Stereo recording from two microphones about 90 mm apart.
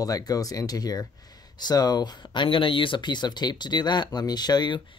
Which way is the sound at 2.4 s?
75° left (ahead or behind).